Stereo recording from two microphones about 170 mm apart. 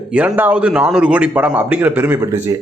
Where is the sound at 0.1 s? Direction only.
5° right (ahead or behind).